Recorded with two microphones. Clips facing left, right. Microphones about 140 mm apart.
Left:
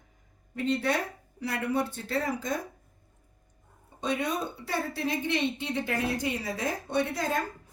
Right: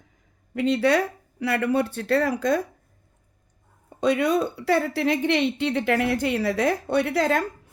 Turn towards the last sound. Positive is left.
turn(degrees=-75)  # may be behind; listen again after turning